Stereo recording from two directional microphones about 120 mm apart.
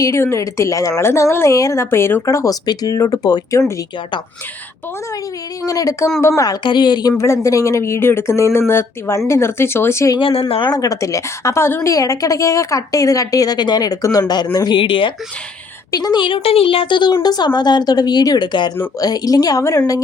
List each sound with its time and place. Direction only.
0.0 s a woman's voice: 25° left (ahead or behind)
5.6 s a woman's voice: 30° left (ahead or behind)
6.6 s a woman's voice: 40° left (ahead or behind)
7.2 s a woman's voice: 25° left (ahead or behind)
10.2 s speech: 45° left (ahead or behind)
10.8 s a woman's voice: 30° left (ahead or behind); by 15.1 s 45° left (ahead or behind)
15.9 s a woman's voice: 35° left (ahead or behind)